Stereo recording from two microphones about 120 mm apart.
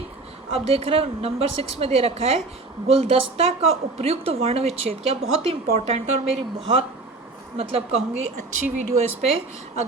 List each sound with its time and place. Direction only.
0.5 s a woman's voice: 55° right (ahead or behind)